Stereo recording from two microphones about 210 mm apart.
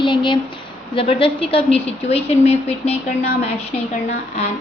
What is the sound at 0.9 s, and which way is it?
A woman's voice, 25° left (ahead or behind).